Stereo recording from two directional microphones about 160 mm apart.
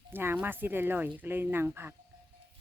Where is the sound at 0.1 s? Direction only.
15° right (ahead or behind).